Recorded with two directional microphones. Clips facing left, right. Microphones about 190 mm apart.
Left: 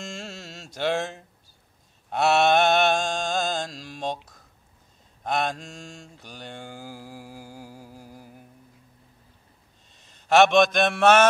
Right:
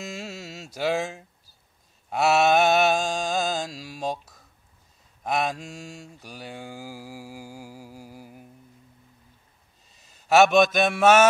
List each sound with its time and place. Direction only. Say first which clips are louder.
0.0 s music: right 2 dB; 5° right (ahead or behind)
2.0 s mantra: even; centre (ahead or behind)
9.9 s a man's voice: even; 5° right (ahead or behind)